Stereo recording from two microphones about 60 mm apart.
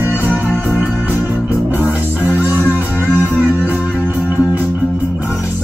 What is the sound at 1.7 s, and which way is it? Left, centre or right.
Music, right.